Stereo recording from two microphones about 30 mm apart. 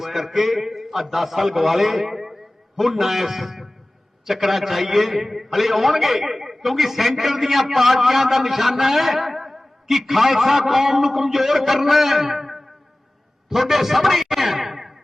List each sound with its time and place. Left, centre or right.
0.0 s a man's voice: centre